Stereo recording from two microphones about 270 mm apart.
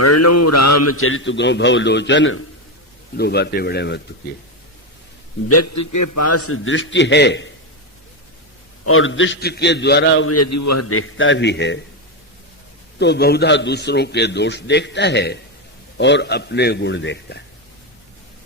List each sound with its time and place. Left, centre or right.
0.0 s a man's voice: left
5.5 s a man's voice: left
8.8 s a man's voice: left
10.3 s a man's voice: left
13.0 s a man's voice: left